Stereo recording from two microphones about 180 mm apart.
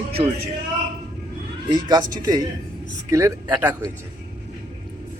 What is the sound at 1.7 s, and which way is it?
Speech, 25° right (ahead or behind).